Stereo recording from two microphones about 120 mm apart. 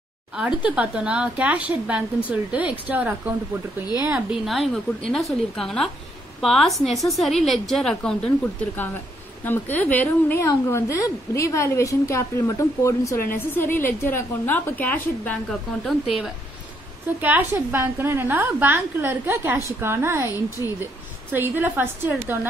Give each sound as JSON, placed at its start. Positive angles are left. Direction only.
{"t": 0.7, "sound": "a woman's voice", "side_deg": -10}
{"t": 4.1, "sound": "a woman's voice", "side_deg": -5}
{"t": 9.4, "sound": "speech", "side_deg": 15}
{"t": 10.4, "sound": "a woman's voice", "side_deg": 25}
{"t": 15.8, "sound": "a woman's voice", "side_deg": 0}
{"t": 17.2, "sound": "a woman's voice", "side_deg": -15}